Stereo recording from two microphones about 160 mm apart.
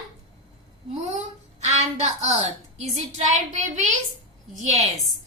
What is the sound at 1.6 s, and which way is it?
A woman's voice, 45° right (ahead or behind).